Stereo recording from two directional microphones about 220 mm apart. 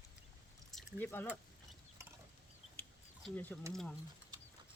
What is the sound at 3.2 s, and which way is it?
Speech, 5° left (ahead or behind).